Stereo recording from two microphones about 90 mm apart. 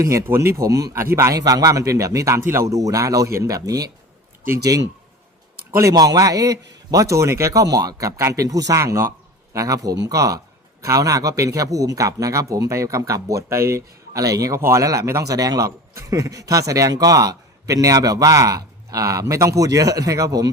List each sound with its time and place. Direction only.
0.0 s a man's voice: 35° right (ahead or behind)
5.9 s a man's voice: 45° right (ahead or behind)